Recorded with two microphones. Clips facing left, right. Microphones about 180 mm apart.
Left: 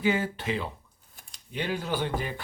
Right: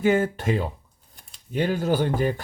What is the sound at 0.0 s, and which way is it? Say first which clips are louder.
Speech: right 6 dB; 50° right (ahead or behind).